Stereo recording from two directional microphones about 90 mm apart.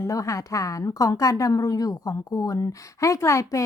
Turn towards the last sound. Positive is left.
turn(degrees=35)  # may be behind; listen again after turning